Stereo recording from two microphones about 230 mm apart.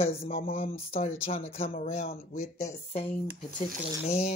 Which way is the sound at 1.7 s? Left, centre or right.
Left.